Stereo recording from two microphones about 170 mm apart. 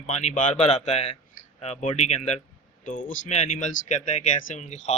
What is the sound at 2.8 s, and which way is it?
Speech, 50° left (ahead or behind).